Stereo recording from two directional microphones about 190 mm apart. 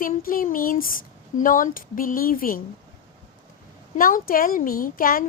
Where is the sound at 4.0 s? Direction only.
45° left (ahead or behind).